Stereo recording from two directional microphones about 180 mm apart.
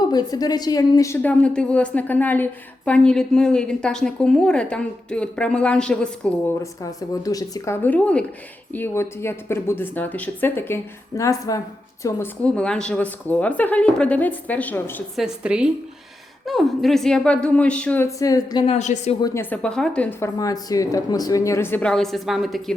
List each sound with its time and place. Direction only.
0.1 s speech: 20° left (ahead or behind); by 6.3 s 5° left (ahead or behind)
6.6 s speech: 20° left (ahead or behind)
15.2 s speech: 5° right (ahead or behind); by 18.6 s 20° left (ahead or behind)
18.6 s a woman's voice: 40° left (ahead or behind)
19.2 s speech: 15° left (ahead or behind)